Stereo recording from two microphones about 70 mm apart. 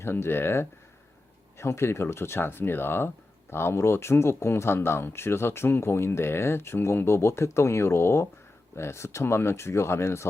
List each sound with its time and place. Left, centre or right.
0.0 s speech: left